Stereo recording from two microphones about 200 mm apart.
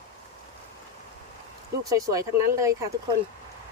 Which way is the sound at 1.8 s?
15° right (ahead or behind).